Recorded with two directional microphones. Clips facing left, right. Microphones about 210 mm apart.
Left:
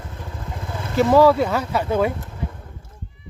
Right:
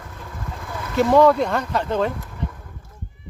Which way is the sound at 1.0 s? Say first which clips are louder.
Left 1 dB; 5° left (ahead or behind).